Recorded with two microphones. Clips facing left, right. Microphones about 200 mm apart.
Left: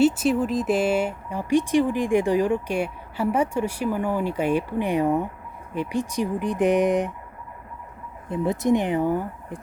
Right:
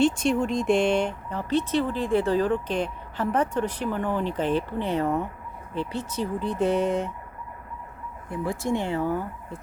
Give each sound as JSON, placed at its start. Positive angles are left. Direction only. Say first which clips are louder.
{"t": 0.0, "sound": "speech", "louder": "left 2 dB", "side_deg": 5}
{"t": 8.3, "sound": "speech", "louder": "left 6 dB", "side_deg": 20}